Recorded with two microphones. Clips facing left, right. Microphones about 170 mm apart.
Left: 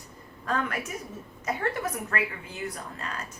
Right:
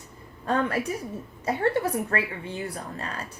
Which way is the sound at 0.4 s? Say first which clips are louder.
Right 5 dB; 30° right (ahead or behind).